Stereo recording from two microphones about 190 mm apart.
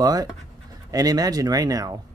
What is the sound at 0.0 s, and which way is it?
Speech, 20° right (ahead or behind).